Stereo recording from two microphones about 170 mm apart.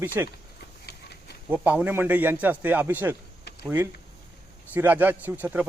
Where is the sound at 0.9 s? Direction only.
75° left (ahead or behind).